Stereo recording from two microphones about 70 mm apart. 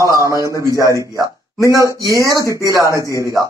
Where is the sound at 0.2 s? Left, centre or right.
Right.